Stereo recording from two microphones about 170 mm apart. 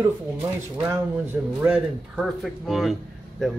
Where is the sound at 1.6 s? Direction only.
5° right (ahead or behind).